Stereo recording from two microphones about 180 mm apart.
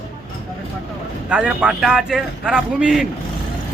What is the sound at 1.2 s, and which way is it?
A man's voice, 5° right (ahead or behind).